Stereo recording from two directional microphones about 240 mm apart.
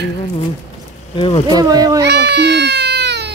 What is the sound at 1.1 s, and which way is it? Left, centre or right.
Speech, centre.